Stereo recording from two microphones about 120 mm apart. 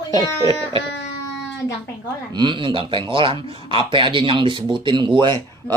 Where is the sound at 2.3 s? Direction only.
40° right (ahead or behind).